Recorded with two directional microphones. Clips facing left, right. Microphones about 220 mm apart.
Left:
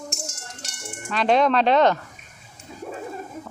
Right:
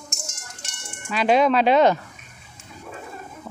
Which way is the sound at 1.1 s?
5° right (ahead or behind).